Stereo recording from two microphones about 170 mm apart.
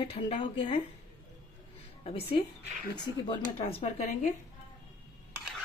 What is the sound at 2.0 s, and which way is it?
A woman's voice, 35° left (ahead or behind).